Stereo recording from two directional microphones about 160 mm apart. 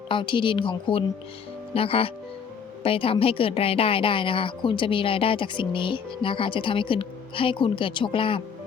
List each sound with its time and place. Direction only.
0.1 s a woman's voice: 30° left (ahead or behind)